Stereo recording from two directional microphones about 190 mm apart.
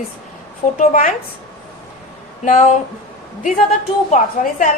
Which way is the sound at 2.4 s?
40° left (ahead or behind).